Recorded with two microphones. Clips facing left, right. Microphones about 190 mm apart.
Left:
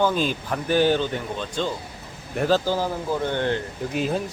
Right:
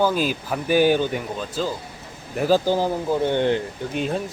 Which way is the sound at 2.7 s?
15° right (ahead or behind).